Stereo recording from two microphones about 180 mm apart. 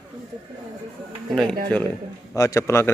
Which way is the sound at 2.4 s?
15° left (ahead or behind).